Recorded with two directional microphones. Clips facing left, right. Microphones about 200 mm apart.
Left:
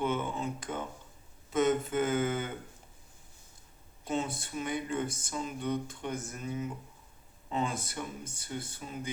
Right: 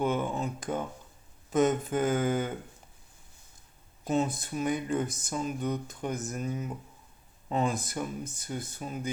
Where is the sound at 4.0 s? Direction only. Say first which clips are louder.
Right 5 dB; 40° right (ahead or behind).